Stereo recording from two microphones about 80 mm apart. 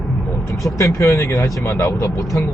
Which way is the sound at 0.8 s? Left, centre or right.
Left.